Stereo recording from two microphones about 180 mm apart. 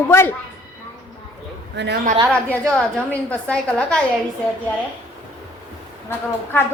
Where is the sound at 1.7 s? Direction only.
75° right (ahead or behind).